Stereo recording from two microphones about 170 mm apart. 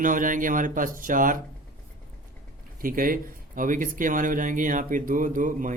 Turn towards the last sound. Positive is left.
turn(degrees=-50)  # may be behind; listen again after turning